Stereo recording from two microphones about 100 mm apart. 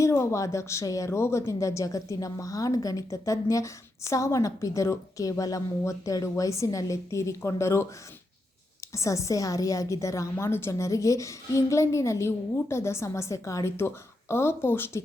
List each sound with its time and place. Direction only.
0.0 s a woman's voice: 30° left (ahead or behind)
8.9 s a woman's voice: 30° left (ahead or behind)